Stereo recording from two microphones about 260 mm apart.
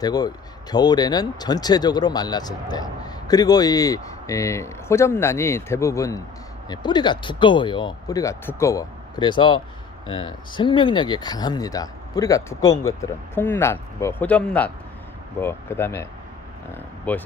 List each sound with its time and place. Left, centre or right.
0.0 s speech: centre